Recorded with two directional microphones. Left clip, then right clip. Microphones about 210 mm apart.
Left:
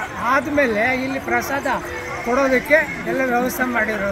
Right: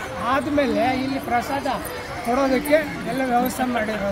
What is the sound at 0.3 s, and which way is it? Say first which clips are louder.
Speech: left 3 dB; 15° left (ahead or behind).